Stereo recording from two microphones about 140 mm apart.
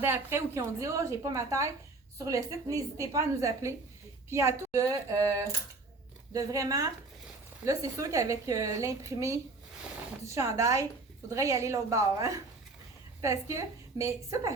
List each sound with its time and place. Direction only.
0.0 s a woman's voice: 15° right (ahead or behind)